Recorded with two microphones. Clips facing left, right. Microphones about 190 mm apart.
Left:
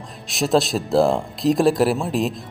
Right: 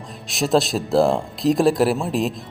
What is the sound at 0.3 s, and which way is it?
Speech, centre (ahead or behind).